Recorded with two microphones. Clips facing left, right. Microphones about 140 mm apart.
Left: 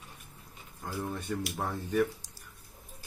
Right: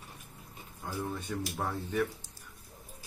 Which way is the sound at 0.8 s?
Centre (ahead or behind).